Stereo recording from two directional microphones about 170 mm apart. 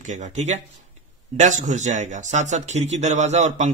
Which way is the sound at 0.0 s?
45° right (ahead or behind).